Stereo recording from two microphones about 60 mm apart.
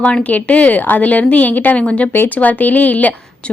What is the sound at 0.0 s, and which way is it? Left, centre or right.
A woman's voice, left.